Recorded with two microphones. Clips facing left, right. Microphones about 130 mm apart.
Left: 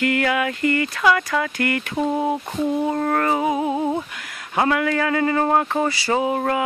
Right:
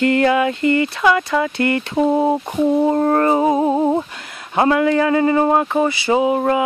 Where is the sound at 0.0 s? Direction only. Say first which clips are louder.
Right 6 dB; 30° right (ahead or behind).